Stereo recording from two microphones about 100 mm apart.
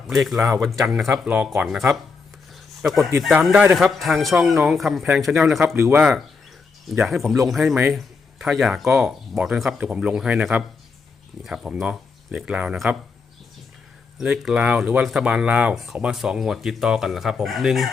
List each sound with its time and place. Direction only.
0.1 s speech: centre (ahead or behind)
1.1 s speech: 15° right (ahead or behind)
1.5 s speech: 5° right (ahead or behind)
5.5 s speech: 25° right (ahead or behind)
6.0 s speech: 5° right (ahead or behind)
14.2 s speech: 5° right (ahead or behind)